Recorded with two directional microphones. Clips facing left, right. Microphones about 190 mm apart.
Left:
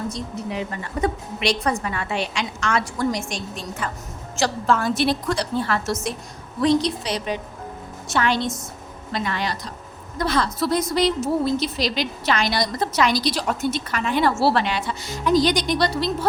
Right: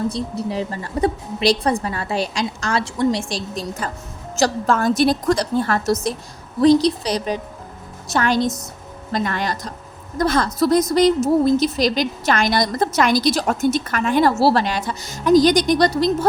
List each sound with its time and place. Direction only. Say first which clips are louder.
0.1 s a woman's voice: right 5 dB; 35° right (ahead or behind)